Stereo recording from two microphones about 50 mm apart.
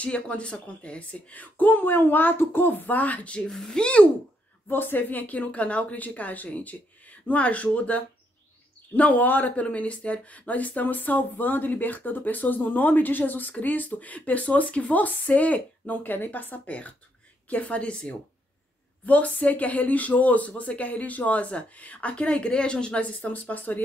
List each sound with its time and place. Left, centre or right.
0.0 s speech: left
3.4 s speech: centre
4.6 s speech: left
15.9 s a woman's voice: left